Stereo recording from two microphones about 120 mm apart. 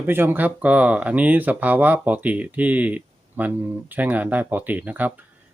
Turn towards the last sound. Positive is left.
turn(degrees=-15)  # may be behind; listen again after turning